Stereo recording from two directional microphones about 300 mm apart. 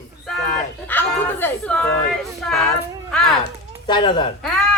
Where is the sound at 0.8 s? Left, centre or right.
Centre.